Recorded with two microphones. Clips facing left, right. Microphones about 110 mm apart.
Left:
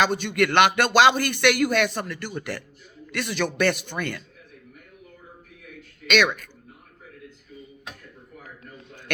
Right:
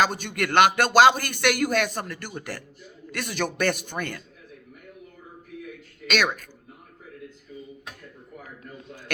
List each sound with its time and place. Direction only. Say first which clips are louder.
0.0 s speech: left 3 dB; 45° right (ahead or behind)
6.1 s speech: left 3 dB; 40° right (ahead or behind)